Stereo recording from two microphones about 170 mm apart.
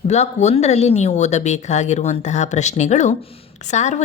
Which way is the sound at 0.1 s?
40° left (ahead or behind).